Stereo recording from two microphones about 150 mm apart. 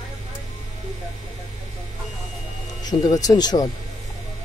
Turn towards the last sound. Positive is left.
turn(degrees=25)  # may be behind; listen again after turning